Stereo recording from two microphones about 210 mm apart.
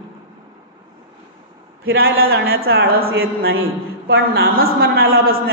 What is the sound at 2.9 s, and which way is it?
Speech, 45° right (ahead or behind).